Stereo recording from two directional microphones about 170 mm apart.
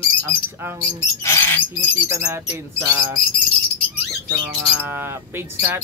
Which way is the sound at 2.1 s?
15° right (ahead or behind).